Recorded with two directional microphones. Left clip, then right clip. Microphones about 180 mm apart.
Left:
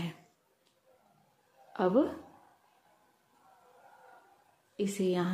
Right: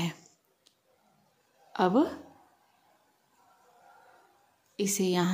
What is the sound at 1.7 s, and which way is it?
Speech, 30° right (ahead or behind).